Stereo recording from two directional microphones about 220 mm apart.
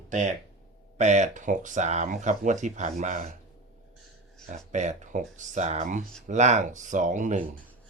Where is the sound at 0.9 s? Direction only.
30° right (ahead or behind).